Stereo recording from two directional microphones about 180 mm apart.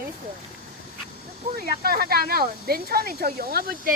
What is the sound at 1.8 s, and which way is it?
Speech, 55° right (ahead or behind).